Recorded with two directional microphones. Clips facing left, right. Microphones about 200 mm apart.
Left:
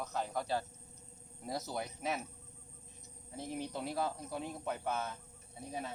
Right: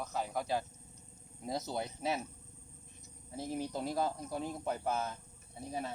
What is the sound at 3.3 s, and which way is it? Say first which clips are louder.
Speech: right 3 dB; 40° right (ahead or behind).